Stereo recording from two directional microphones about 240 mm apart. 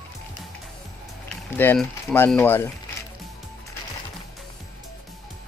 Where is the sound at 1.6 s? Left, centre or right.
Centre.